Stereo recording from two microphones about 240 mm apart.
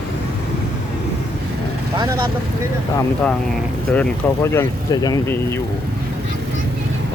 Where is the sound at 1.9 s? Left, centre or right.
Centre.